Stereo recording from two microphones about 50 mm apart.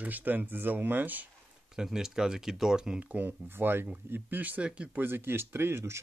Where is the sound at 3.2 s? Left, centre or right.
Right.